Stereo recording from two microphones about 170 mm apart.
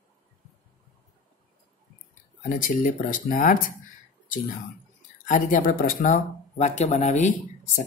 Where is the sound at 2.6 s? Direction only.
50° left (ahead or behind).